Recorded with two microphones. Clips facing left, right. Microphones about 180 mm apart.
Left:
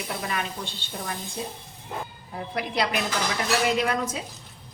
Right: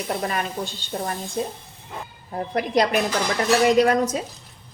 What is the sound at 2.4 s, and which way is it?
A woman's voice, 45° right (ahead or behind).